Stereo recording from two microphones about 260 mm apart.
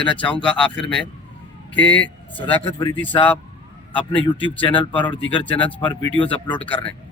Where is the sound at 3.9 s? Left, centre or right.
Centre.